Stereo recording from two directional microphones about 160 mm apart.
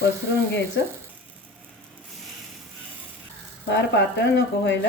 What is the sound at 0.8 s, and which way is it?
Speech, 90° left.